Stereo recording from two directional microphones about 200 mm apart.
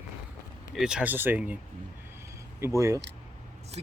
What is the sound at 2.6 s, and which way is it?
Speech, 15° right (ahead or behind).